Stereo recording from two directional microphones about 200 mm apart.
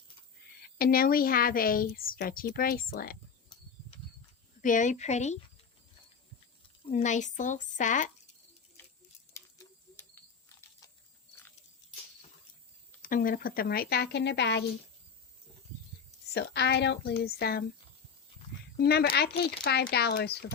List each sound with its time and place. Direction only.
0.8 s a woman's voice: 45° left (ahead or behind)
3.5 s mechanisms: 20° left (ahead or behind)
4.6 s speech: 40° left (ahead or behind)
6.8 s speech: 35° left (ahead or behind)
9.3 s a sound: 15° left (ahead or behind)
13.0 s a woman's voice: 45° left (ahead or behind); by 14.6 s 60° left (ahead or behind)
16.3 s a woman's voice: 55° left (ahead or behind)
18.8 s a woman's voice: 55° left (ahead or behind)